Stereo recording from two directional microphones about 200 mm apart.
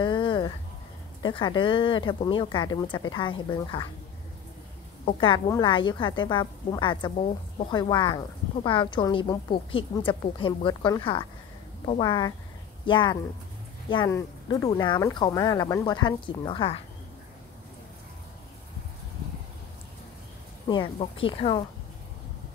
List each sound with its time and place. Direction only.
0.0 s a sound: 25° left (ahead or behind)
1.2 s a woman's voice: 20° left (ahead or behind)
5.5 s a woman's voice: 25° left (ahead or behind)
20.6 s a woman's voice: 20° left (ahead or behind)